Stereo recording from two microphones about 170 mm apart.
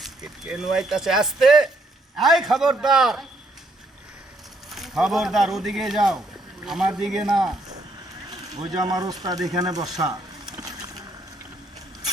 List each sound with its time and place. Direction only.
0.0 s speech: 5° right (ahead or behind)
4.7 s speech: centre (ahead or behind)
8.7 s speech: 25° right (ahead or behind)